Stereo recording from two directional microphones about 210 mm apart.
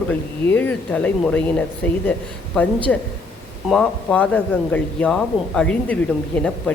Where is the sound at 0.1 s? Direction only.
10° left (ahead or behind).